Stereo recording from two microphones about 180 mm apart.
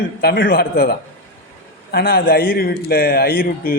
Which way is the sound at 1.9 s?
55° left (ahead or behind).